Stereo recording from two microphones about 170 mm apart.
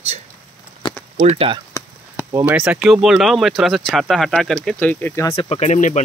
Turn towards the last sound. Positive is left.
turn(degrees=45)  # may be behind; listen again after turning